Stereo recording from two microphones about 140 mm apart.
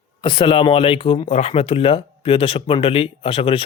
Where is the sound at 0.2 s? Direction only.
35° left (ahead or behind).